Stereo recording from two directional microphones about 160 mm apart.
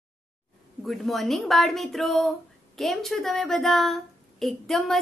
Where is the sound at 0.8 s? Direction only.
Centre (ahead or behind).